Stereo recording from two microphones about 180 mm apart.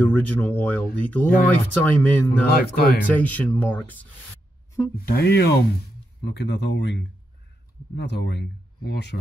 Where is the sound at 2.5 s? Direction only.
60° left (ahead or behind).